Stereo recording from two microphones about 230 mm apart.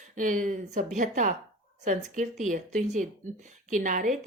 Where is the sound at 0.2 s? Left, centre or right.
Right.